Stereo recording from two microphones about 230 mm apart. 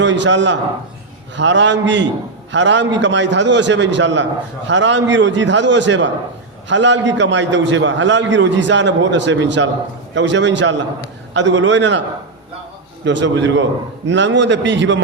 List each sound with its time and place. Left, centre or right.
0.0 s a man's voice: right
13.1 s a man's voice: right